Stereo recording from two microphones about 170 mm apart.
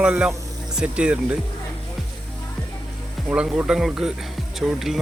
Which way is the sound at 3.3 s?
5° right (ahead or behind).